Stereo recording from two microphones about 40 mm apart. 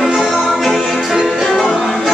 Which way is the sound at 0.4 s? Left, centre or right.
Centre.